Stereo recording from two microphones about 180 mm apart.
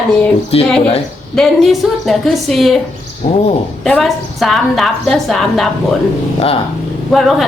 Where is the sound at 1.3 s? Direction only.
Centre (ahead or behind).